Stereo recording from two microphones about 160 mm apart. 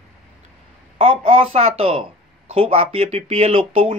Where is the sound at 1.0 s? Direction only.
35° right (ahead or behind).